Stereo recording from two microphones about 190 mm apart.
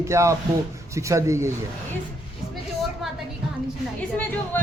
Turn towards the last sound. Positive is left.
turn(degrees=10)  # may be behind; listen again after turning